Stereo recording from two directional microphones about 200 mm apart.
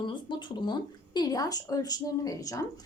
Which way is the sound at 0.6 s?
20° left (ahead or behind).